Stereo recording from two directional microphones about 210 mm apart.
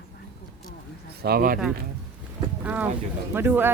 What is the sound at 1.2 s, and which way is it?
Speech, 45° right (ahead or behind).